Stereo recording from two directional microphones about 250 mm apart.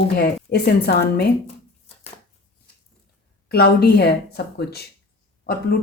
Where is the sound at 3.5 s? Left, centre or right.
Left.